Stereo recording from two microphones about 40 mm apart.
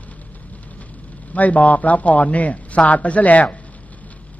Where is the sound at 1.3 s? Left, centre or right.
Left.